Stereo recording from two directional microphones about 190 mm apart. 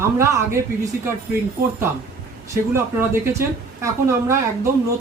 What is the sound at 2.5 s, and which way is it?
A woman's voice, 15° right (ahead or behind).